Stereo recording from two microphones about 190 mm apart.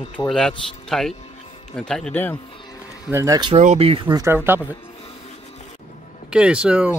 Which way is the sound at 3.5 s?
35° right (ahead or behind).